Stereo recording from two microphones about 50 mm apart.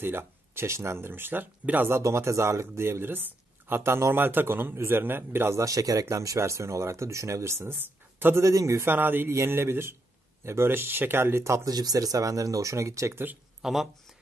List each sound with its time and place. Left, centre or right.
0.0 s speech: right
1.9 s speech: right
5.5 s speech: right
8.4 s a man's voice: right
8.8 s speech: right
9.5 s speech: right
12.3 s speech: right
13.1 s speech: right
13.6 s speech: centre